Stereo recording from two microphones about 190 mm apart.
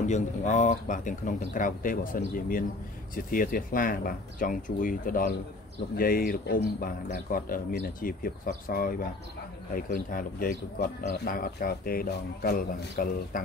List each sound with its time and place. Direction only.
0.0 s speech: 40° left (ahead or behind)